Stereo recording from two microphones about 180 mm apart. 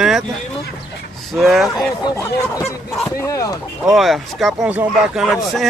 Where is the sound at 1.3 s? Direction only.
Centre (ahead or behind).